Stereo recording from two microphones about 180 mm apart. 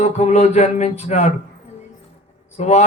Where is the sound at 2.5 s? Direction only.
40° left (ahead or behind).